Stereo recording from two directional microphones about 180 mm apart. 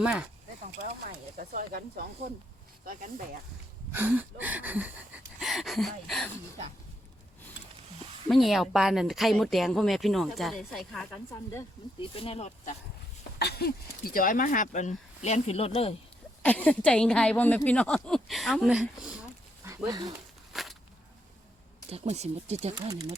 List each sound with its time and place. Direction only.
0.0 s speech: 5° right (ahead or behind)
0.8 s speech: 50° right (ahead or behind)
3.9 s a sound: 10° right (ahead or behind)
8.3 s speech: centre (ahead or behind)
11.9 s speech: 30° left (ahead or behind)
13.4 s speech: 60° left (ahead or behind); by 16.0 s 35° left (ahead or behind)
16.4 s speech: 5° left (ahead or behind)
19.6 s speech: 20° right (ahead or behind)
20.5 s a sound: centre (ahead or behind)
21.8 s speech: 35° right (ahead or behind)
22.9 s a sound: 15° right (ahead or behind)